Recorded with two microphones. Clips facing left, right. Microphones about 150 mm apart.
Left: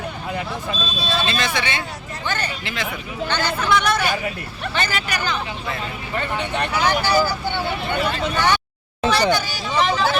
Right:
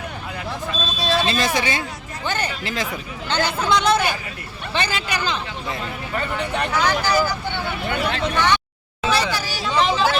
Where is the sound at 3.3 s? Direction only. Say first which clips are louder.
Right 1 dB; 20° right (ahead or behind).